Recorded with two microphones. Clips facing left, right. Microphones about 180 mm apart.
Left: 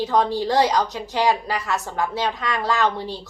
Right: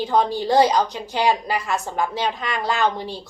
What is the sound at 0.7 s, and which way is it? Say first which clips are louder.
A woman's voice: right 1 dB; 15° right (ahead or behind).